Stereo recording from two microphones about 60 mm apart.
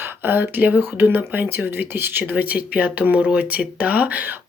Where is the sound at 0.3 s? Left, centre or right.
Right.